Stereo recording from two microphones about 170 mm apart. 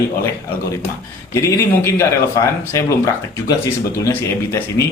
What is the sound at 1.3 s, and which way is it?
Speech, 15° left (ahead or behind).